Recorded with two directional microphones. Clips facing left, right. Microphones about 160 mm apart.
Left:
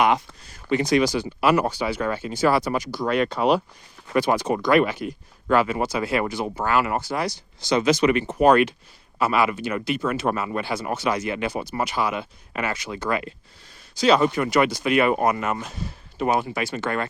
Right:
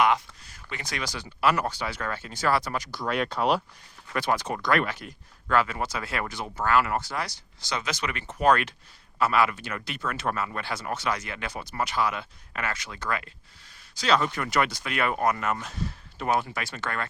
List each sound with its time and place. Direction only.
0.7 s speech: 20° left (ahead or behind)